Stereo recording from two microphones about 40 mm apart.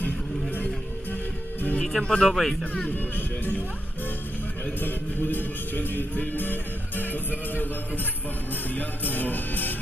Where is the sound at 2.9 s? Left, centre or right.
Left.